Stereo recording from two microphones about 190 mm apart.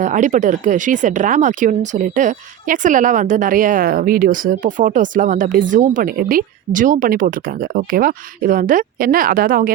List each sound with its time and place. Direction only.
0.0 s speech: 40° right (ahead or behind)